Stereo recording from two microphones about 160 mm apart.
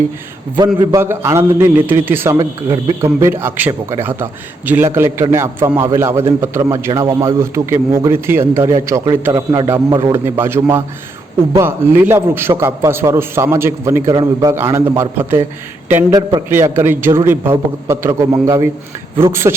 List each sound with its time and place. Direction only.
0.8 s a man's voice: 20° right (ahead or behind)
10.2 s a man's voice: 15° right (ahead or behind)
14.1 s a man's voice: 30° right (ahead or behind)
14.5 s a man's voice: 15° right (ahead or behind)